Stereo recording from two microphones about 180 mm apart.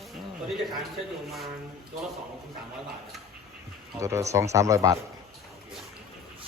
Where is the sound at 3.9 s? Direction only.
15° right (ahead or behind).